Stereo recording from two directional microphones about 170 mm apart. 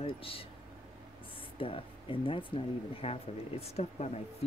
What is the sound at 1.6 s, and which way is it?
A woman's voice, 30° left (ahead or behind).